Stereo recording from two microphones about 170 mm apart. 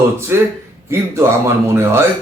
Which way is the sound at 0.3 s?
15° right (ahead or behind).